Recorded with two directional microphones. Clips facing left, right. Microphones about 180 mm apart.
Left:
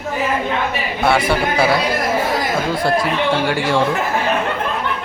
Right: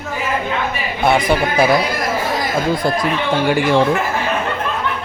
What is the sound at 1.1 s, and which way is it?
Speech, 20° right (ahead or behind).